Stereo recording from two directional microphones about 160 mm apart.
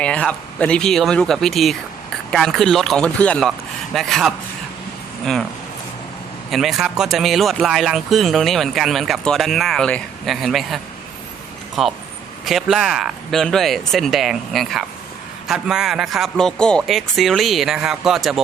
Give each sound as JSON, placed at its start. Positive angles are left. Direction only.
{"t": 0.0, "sound": "speech", "side_deg": 5}
{"t": 6.5, "sound": "speech", "side_deg": 0}